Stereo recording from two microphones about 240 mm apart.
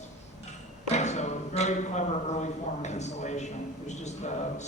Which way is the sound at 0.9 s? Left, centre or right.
Left.